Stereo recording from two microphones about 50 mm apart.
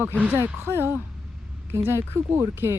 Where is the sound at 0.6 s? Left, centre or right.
Right.